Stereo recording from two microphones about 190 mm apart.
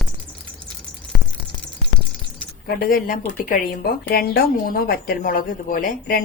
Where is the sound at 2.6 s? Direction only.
50° left (ahead or behind).